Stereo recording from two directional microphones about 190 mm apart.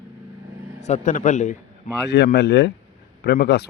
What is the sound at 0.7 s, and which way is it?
Speech, 35° left (ahead or behind).